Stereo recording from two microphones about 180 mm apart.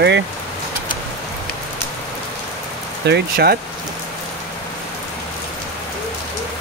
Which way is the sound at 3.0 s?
65° right (ahead or behind).